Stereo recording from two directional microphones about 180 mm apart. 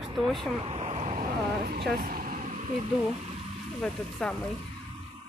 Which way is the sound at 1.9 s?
55° right (ahead or behind).